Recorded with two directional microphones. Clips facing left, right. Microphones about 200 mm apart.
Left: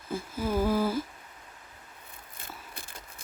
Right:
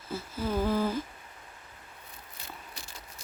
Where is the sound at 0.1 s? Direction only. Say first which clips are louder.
Left 2 dB; 10° left (ahead or behind).